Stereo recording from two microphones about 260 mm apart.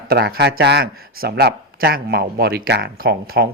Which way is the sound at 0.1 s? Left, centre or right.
Right.